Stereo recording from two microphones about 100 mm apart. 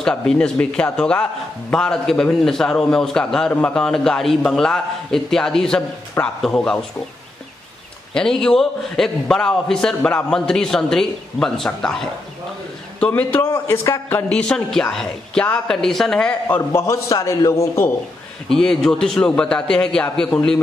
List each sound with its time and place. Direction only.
0.0 s a man's voice: 10° left (ahead or behind)
8.1 s a man's voice: 5° left (ahead or behind)
13.0 s a man's voice: 20° left (ahead or behind)
14.1 s speech: 10° left (ahead or behind)
16.5 s a man's voice: 25° left (ahead or behind)
18.5 s a man's voice: 5° left (ahead or behind)